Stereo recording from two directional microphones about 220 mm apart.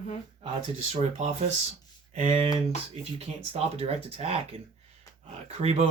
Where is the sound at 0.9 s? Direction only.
30° right (ahead or behind).